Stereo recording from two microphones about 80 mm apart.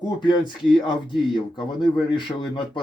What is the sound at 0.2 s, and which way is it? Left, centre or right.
Speech, left.